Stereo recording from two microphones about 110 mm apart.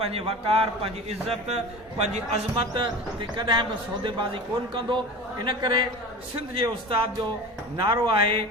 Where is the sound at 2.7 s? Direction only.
45° right (ahead or behind).